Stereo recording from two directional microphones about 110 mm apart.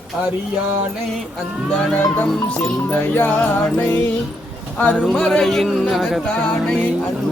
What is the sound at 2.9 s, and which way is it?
Music, 15° left (ahead or behind).